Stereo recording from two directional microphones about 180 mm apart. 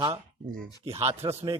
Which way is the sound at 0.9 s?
35° right (ahead or behind).